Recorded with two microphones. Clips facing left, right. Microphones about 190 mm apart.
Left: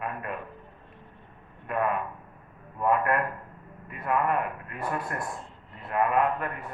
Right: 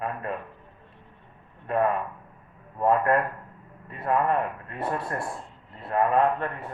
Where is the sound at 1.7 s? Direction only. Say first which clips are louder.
Right 3 dB; 30° right (ahead or behind).